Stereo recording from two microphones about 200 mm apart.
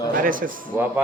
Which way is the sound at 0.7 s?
10° right (ahead or behind).